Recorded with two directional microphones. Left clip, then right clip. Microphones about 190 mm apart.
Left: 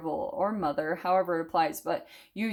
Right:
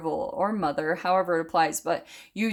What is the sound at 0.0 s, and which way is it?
A woman's voice, 20° right (ahead or behind).